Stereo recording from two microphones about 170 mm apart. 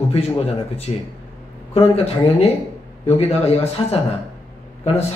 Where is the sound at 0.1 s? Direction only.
40° left (ahead or behind).